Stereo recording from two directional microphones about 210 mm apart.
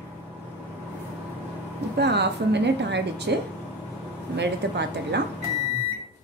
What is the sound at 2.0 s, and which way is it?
A woman's voice, 55° right (ahead or behind).